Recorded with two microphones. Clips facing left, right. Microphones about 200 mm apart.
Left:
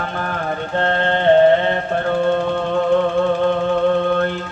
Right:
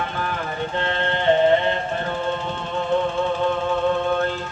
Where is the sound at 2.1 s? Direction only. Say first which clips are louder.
Left 8 dB; 60° left (ahead or behind).